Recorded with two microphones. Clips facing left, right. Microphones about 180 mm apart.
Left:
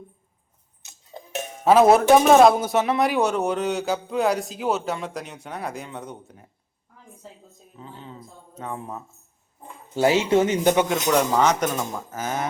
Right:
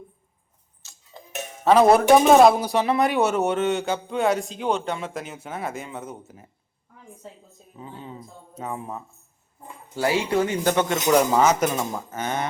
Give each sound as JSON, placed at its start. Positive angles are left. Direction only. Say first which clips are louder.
{"t": 0.8, "sound": "tick-tock", "louder": "left 1 dB", "side_deg": 20}
{"t": 1.6, "sound": "speech", "louder": "left 1 dB", "side_deg": 5}
{"t": 7.8, "sound": "speech", "louder": "right 2 dB", "side_deg": -10}
{"t": 9.9, "sound": "speech", "louder": "left 4 dB", "side_deg": 20}
{"t": 10.8, "sound": "speech", "louder": "right 2 dB", "side_deg": -5}